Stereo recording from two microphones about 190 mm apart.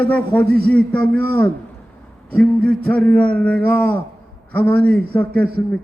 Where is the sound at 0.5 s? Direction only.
5° left (ahead or behind).